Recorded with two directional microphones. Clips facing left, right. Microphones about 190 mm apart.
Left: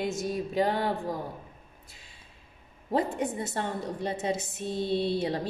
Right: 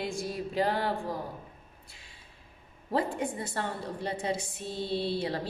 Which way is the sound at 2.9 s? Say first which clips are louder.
Left 2 dB; 20° left (ahead or behind).